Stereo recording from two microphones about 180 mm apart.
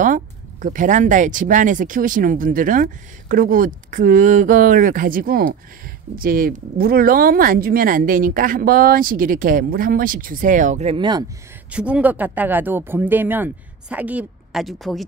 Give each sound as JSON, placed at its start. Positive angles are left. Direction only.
{"t": 0.0, "sound": "speech", "side_deg": -45}
{"t": 11.7, "sound": "speech", "side_deg": -5}